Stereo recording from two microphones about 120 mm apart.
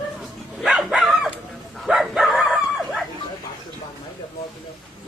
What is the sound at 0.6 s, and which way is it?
Bow-wow, 5° right (ahead or behind).